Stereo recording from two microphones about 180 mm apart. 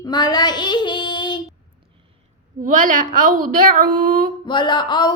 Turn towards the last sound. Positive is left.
turn(degrees=25)  # may be behind; listen again after turning